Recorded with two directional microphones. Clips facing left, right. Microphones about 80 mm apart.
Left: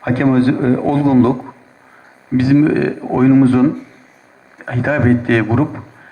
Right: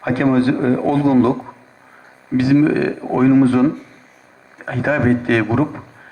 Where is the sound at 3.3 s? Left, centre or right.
Left.